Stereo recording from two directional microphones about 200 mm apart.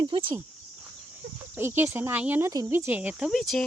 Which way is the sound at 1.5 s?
10° right (ahead or behind).